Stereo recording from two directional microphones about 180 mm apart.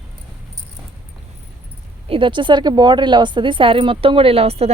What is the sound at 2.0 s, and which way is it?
A woman's voice, 30° right (ahead or behind).